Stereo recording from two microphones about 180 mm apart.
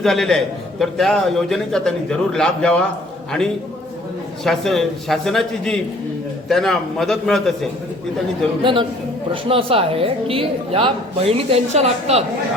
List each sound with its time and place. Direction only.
0.0 s a man's voice: centre (ahead or behind)
4.4 s a man's voice: centre (ahead or behind)
8.6 s a man's voice: 30° right (ahead or behind)